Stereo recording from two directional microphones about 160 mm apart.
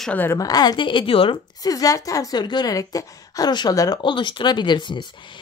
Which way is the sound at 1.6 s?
25° left (ahead or behind).